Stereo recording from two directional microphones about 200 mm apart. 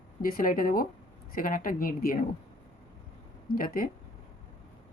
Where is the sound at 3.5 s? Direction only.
45° left (ahead or behind).